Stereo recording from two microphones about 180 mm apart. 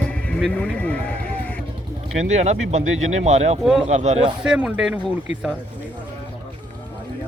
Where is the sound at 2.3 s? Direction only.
40° right (ahead or behind).